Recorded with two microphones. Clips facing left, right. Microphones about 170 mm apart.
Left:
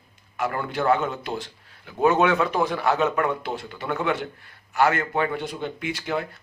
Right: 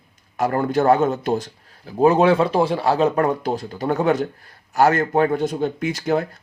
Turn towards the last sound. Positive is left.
turn(degrees=-40)  # may be behind; listen again after turning